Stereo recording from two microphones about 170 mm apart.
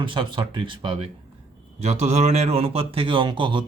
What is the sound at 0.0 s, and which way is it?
A man's voice, 30° right (ahead or behind).